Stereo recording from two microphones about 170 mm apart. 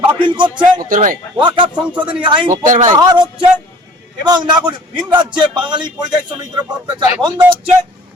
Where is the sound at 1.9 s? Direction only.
10° right (ahead or behind).